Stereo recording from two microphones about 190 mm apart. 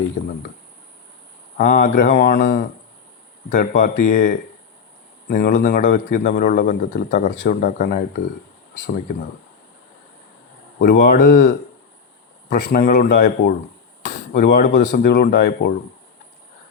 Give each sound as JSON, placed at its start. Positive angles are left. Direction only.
{"t": 0.2, "sound": "a man's voice", "side_deg": 45}
{"t": 1.5, "sound": "a man's voice", "side_deg": 45}
{"t": 10.8, "sound": "a man's voice", "side_deg": 50}